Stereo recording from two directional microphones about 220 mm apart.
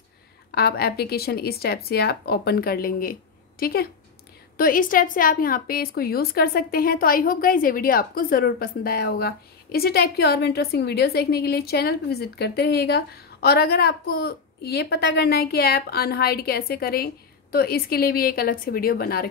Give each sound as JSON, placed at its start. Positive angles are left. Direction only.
{"t": 0.6, "sound": "a woman's voice", "side_deg": 45}